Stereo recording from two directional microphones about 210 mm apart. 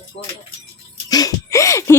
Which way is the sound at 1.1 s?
15° left (ahead or behind).